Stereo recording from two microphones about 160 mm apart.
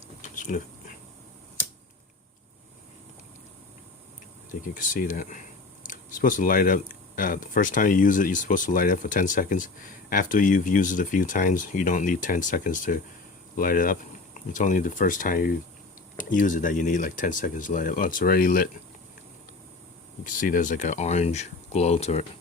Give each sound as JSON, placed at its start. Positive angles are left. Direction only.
{"t": 0.2, "sound": "a sound", "side_deg": 55}
{"t": 4.6, "sound": "speech", "side_deg": 55}
{"t": 20.2, "sound": "speech", "side_deg": 60}